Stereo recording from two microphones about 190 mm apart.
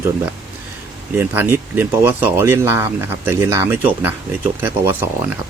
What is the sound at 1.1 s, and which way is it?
Speech, 10° right (ahead or behind).